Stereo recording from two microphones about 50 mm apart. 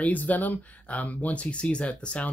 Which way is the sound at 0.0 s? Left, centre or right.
Left.